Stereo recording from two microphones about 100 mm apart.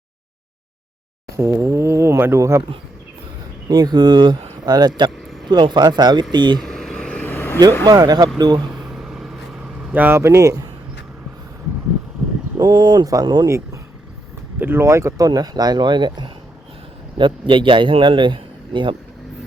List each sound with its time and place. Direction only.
1.4 s speech: 25° right (ahead or behind)
3.7 s speech: 45° right (ahead or behind)
5.1 s vehicle: centre (ahead or behind)
5.5 s speech: 45° right (ahead or behind)
6.6 s vehicle: 5° left (ahead or behind)
7.3 s vehicle: 20° left (ahead or behind)
7.9 s speech: 40° right (ahead or behind)
8.9 s vehicle: 5° right (ahead or behind)
9.9 s speech: 20° right (ahead or behind); by 10.7 s 35° right (ahead or behind)
12.5 s speech: 45° right (ahead or behind)
14.6 s speech: 25° right (ahead or behind)
15.3 s a man's voice: 40° right (ahead or behind)